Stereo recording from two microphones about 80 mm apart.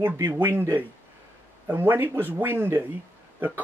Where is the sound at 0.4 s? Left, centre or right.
Right.